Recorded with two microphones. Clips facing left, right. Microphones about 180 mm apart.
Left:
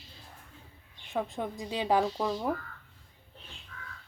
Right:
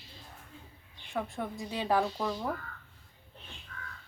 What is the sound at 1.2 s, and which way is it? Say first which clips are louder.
A woman's voice: left 2 dB; 20° left (ahead or behind).